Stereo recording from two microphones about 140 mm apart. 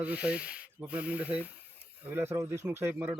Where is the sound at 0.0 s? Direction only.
10° right (ahead or behind).